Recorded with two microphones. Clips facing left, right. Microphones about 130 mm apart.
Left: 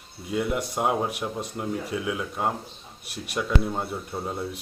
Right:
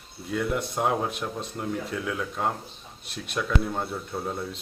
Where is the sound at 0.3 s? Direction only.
10° left (ahead or behind).